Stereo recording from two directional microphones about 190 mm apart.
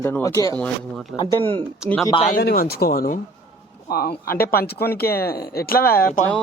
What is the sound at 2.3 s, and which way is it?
Speech, 50° left (ahead or behind).